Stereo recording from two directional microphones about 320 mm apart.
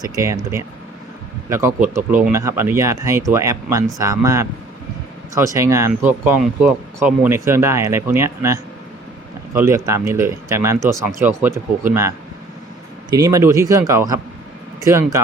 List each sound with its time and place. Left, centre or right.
0.0 s speech: centre